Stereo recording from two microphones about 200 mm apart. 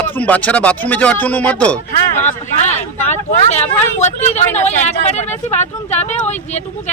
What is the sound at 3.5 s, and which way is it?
Speech, 35° left (ahead or behind).